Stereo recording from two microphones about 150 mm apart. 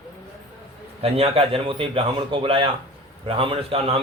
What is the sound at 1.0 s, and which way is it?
A man's voice, 40° right (ahead or behind).